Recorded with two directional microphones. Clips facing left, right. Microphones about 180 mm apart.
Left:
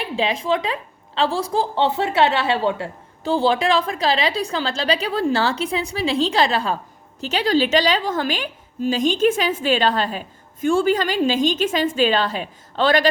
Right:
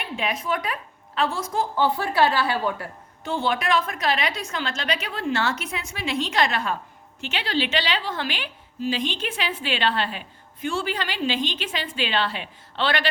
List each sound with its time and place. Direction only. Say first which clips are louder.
0.0 s a woman's voice: left 6 dB; 30° left (ahead or behind)